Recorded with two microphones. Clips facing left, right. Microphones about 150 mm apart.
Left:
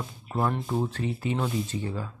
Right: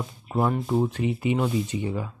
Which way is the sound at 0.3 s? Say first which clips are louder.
Right 4 dB; 10° right (ahead or behind).